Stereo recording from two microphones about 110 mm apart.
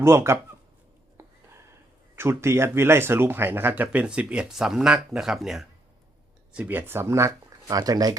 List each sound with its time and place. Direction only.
0.0 s speech: 25° right (ahead or behind)
2.1 s speech: 25° right (ahead or behind); by 5.6 s 5° right (ahead or behind)
6.5 s speech: 15° right (ahead or behind); by 8.1 s 35° right (ahead or behind)